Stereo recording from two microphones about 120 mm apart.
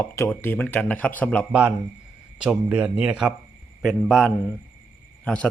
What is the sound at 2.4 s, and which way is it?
A man's voice, 10° right (ahead or behind).